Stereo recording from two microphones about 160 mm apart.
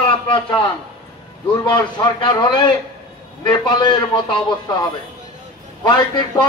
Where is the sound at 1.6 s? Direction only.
30° left (ahead or behind).